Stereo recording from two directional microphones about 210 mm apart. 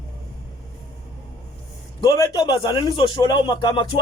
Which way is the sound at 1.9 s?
15° left (ahead or behind).